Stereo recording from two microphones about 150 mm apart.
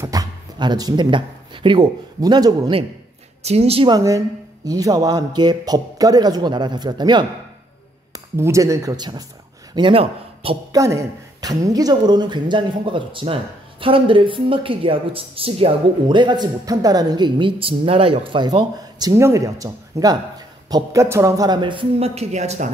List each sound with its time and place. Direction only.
0.0 s speech: 25° right (ahead or behind)
3.4 s speech: 45° right (ahead or behind)
3.9 s a man's voice: 20° right (ahead or behind); by 10.6 s 40° right (ahead or behind)
10.7 s speech: 20° right (ahead or behind); by 22.7 s 50° right (ahead or behind)